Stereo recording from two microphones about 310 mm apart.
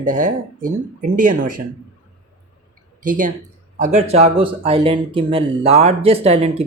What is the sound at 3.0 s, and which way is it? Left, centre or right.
Speech, right.